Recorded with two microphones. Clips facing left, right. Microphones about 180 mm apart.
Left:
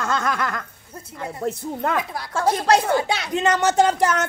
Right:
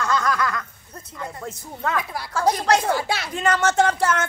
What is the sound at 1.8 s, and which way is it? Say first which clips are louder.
Speech: left 1 dB; 20° left (ahead or behind).